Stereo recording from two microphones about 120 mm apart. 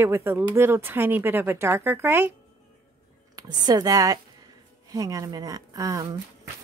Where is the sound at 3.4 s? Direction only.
35° right (ahead or behind).